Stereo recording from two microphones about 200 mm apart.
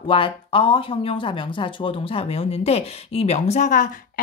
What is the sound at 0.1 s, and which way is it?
Speech, 25° left (ahead or behind).